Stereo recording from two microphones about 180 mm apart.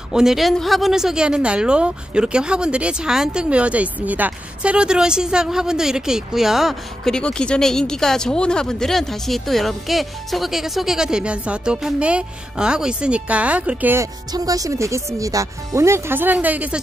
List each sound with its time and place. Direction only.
0.1 s a woman's voice: centre (ahead or behind)
14.3 s speech: 20° right (ahead or behind)